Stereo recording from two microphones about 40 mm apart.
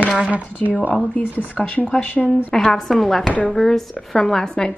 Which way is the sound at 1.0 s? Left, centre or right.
Left.